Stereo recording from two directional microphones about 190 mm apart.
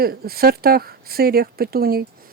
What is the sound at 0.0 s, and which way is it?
Speech, 55° right (ahead or behind).